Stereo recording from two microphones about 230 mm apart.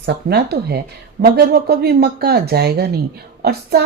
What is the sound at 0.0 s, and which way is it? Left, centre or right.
A woman's voice, right.